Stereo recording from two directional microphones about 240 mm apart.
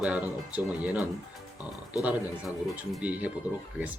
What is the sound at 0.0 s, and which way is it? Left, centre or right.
Speech, centre.